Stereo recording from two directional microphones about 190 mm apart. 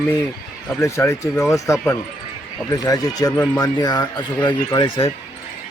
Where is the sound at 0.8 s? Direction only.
15° left (ahead or behind).